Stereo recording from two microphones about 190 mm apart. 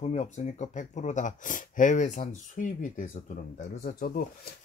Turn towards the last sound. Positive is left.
turn(degrees=50)  # may be behind; listen again after turning